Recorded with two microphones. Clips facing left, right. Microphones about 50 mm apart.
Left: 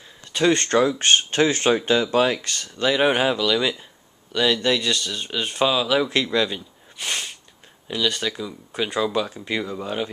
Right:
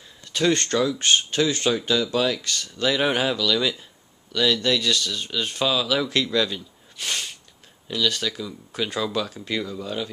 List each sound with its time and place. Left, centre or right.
0.2 s speech: centre
2.8 s speech: centre